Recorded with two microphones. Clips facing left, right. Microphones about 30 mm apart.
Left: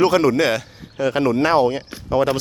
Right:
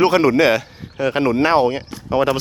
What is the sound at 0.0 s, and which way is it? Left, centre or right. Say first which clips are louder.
Speech: right 2 dB; centre.